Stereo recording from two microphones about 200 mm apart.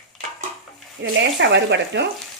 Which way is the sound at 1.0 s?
60° right (ahead or behind).